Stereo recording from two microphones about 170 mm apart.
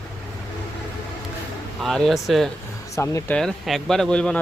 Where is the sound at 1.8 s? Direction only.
Centre (ahead or behind).